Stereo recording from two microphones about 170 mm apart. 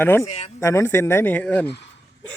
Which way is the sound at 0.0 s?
15° left (ahead or behind).